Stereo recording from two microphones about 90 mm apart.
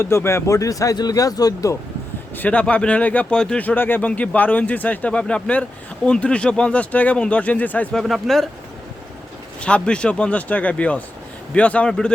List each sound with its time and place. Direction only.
0.0 s speech: 25° left (ahead or behind); by 1.7 s 45° left (ahead or behind)
2.3 s speech: 20° left (ahead or behind)
7.9 s speech: centre (ahead or behind)
9.6 s speech: 10° left (ahead or behind)